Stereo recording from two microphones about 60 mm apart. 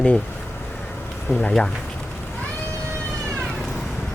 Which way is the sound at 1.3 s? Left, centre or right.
Centre.